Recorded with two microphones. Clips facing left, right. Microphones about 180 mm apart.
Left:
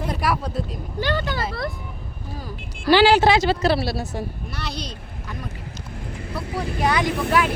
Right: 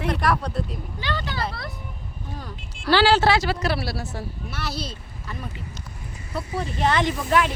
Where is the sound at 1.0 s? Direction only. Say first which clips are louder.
Left 7 dB; 50° left (ahead or behind).